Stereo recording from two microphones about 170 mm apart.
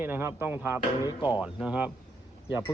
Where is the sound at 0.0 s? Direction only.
15° right (ahead or behind).